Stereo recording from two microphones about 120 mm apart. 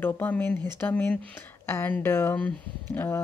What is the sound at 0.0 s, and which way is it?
Speech, 15° left (ahead or behind).